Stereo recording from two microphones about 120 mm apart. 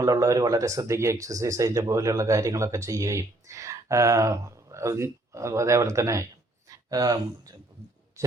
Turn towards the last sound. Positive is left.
turn(degrees=-30)  # may be behind; listen again after turning